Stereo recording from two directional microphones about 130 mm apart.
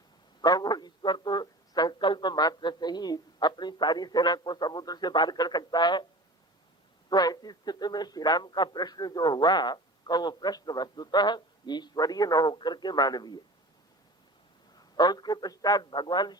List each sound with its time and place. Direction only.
0.4 s a man's voice: 30° left (ahead or behind)
7.1 s a man's voice: 30° left (ahead or behind)
14.9 s a man's voice: 35° left (ahead or behind)